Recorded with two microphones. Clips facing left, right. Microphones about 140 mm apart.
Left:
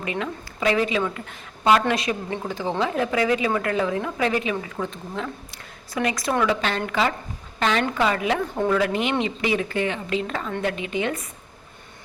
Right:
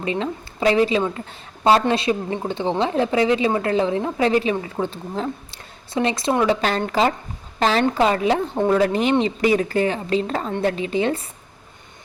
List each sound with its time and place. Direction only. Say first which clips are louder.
0.0 s a woman's voice: right 4 dB; 30° right (ahead or behind)